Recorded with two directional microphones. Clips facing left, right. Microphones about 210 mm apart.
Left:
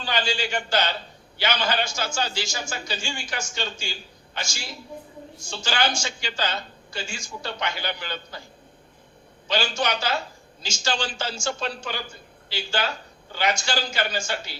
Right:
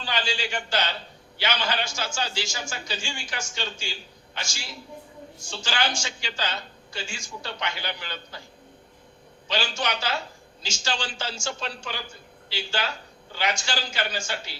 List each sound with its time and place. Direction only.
0.0 s a man's voice: 45° left (ahead or behind)
5.6 s a man's voice: 45° left (ahead or behind)
9.5 s a man's voice: 45° left (ahead or behind)